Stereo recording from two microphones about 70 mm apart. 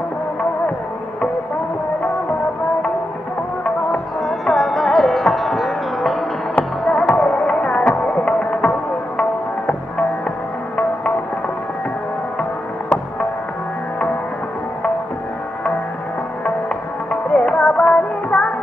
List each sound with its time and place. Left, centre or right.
4.2 s music: centre
7.1 s music: centre
17.1 s music: centre